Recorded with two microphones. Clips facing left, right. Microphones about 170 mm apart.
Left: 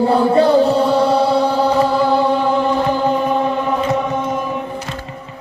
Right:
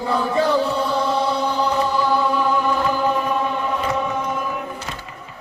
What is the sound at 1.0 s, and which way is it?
Chant, 35° left (ahead or behind).